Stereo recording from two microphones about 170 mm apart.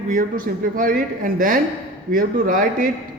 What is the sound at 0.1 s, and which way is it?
Speech, 50° right (ahead or behind).